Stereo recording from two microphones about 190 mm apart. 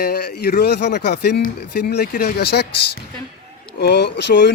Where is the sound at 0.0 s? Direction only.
55° left (ahead or behind).